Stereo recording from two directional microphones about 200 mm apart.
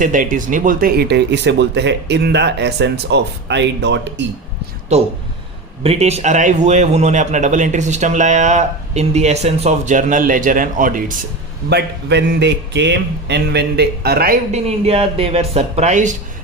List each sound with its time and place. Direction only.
0.0 s speech: 40° right (ahead or behind); by 4.3 s 60° right (ahead or behind)
4.9 s a man's voice: 35° right (ahead or behind)
11.7 s speech: 60° right (ahead or behind)
14.5 s speech: 30° right (ahead or behind)